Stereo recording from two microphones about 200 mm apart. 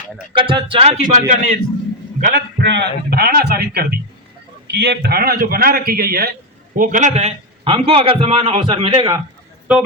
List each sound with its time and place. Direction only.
0.3 s speech: 25° right (ahead or behind)
2.2 s a man's voice: 55° right (ahead or behind); by 9.2 s 20° right (ahead or behind)